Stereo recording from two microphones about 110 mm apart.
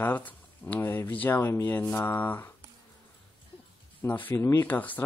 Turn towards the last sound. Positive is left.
turn(degrees=15)  # may be behind; listen again after turning